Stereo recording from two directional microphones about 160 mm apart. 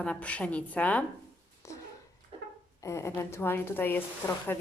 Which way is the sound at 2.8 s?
15° left (ahead or behind).